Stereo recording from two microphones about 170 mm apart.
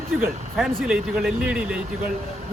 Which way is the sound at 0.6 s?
Centre (ahead or behind).